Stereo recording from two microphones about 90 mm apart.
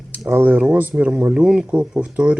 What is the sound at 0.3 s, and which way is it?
Speech, 20° right (ahead or behind).